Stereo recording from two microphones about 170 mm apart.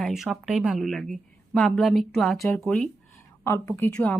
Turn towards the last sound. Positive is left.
turn(degrees=15)  # may be behind; listen again after turning